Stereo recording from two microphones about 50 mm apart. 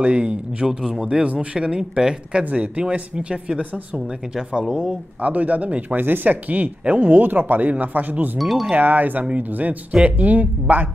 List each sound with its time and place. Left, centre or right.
0.0 s speech: right
0.7 s speech: centre
1.0 s speech: right
2.5 s speech: right; by 4.9 s centre
5.2 s speech: right
5.9 s speech: right
8.4 s speech: centre
8.7 s speech: right